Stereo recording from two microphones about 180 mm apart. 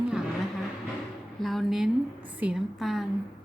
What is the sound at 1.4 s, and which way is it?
A woman's voice, centre (ahead or behind).